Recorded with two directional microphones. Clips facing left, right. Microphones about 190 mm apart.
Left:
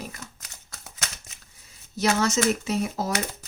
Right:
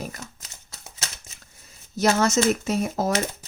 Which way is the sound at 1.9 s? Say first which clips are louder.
Right 3 dB; 45° right (ahead or behind).